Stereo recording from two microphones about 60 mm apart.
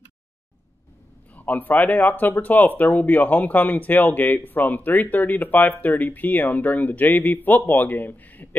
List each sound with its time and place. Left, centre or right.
1.3 s a man's voice: left